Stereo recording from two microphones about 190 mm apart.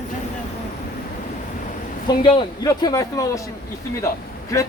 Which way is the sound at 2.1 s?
25° left (ahead or behind).